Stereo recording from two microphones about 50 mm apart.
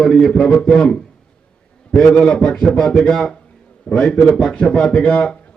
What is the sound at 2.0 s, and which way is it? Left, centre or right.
A man's voice, centre.